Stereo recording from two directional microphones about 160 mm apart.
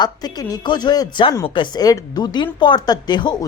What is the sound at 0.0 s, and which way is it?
Speech, 25° left (ahead or behind).